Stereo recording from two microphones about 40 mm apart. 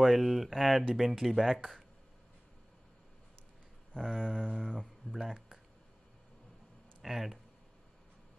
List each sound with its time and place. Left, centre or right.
0.0 s speech: centre
3.9 s a sound: left
7.0 s speech: centre